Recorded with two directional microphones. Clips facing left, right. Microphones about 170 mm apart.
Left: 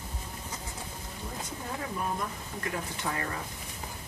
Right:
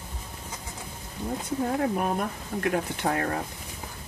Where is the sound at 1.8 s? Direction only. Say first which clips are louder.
Right 7 dB; 65° right (ahead or behind).